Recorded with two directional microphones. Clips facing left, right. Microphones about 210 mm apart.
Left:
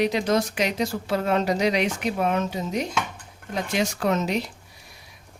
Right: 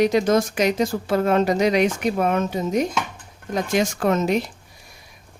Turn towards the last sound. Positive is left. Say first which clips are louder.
# right 4 dB
turn(degrees=-50)  # may be behind; listen again after turning